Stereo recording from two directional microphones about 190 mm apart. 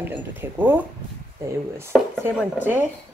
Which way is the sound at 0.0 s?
10° right (ahead or behind).